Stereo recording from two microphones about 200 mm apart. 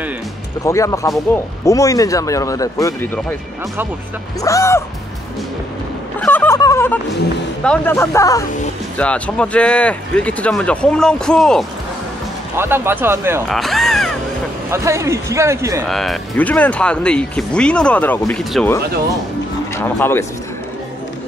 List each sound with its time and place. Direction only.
0.7 s speech: 15° left (ahead or behind)
4.4 s speech: 15° left (ahead or behind)
6.2 s fowl: 10° left (ahead or behind)
7.6 s speech: 10° left (ahead or behind)
12.5 s speech: 10° right (ahead or behind)
13.5 s speech: centre (ahead or behind)
14.7 s speech: 15° right (ahead or behind)
15.8 s speech: centre (ahead or behind)
19.8 s speech: 10° left (ahead or behind)